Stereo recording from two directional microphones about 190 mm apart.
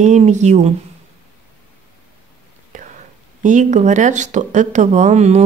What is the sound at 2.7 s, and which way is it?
Whispering, 40° right (ahead or behind).